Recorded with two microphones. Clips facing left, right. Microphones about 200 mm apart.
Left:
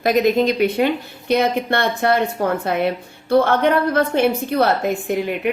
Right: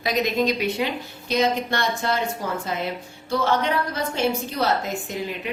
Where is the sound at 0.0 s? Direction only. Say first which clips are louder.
Left 7 dB; 50° left (ahead or behind).